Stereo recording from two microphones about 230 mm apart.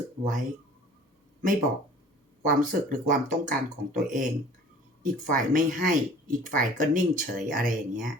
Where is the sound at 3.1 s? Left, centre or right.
Right.